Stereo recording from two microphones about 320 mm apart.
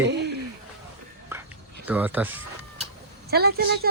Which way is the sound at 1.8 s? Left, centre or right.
Centre.